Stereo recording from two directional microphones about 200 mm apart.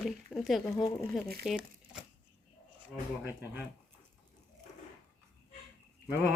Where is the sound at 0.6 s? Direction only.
15° left (ahead or behind).